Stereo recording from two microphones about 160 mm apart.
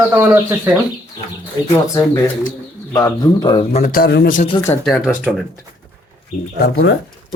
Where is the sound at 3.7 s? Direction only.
40° left (ahead or behind).